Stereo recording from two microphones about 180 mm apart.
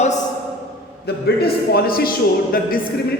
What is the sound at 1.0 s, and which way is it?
A man's voice, 60° left (ahead or behind).